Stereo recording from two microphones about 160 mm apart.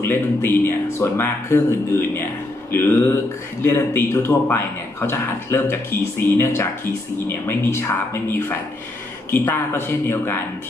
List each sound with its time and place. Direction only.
0.0 s speech: 15° left (ahead or behind)